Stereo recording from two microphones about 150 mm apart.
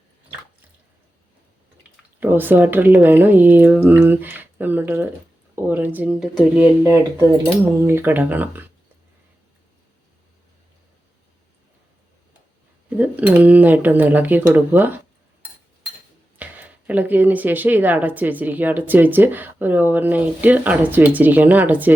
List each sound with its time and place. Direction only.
2.2 s speech: 15° right (ahead or behind)
6.8 s speech: 15° right (ahead or behind)
13.0 s speech: 10° right (ahead or behind)
16.4 s speech: 10° right (ahead or behind)